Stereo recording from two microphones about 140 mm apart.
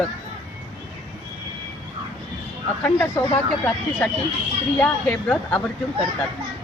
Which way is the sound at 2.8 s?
10° left (ahead or behind).